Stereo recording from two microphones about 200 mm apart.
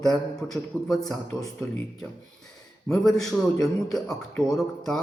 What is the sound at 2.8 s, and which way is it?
A man's voice, centre (ahead or behind).